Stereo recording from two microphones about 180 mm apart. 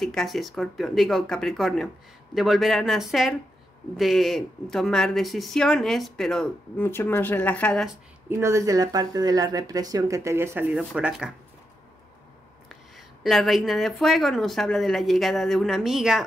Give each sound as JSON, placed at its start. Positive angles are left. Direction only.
{"t": 0.0, "sound": "speech", "side_deg": 0}
{"t": 8.4, "sound": "speech", "side_deg": -15}
{"t": 12.6, "sound": "speech", "side_deg": 0}